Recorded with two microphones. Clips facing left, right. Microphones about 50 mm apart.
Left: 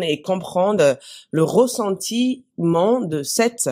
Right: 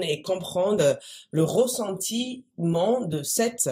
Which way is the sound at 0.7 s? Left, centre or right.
Left.